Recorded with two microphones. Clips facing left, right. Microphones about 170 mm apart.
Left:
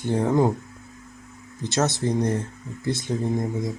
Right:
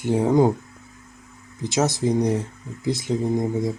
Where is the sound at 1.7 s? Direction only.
15° right (ahead or behind).